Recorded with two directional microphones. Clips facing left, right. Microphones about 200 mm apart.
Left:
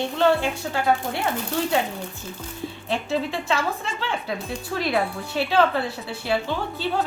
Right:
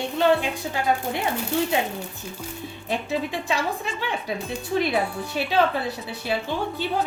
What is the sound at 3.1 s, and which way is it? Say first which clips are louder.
Speech: left 2 dB; 15° right (ahead or behind).